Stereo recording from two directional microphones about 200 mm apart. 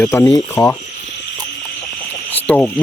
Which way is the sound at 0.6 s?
5° left (ahead or behind).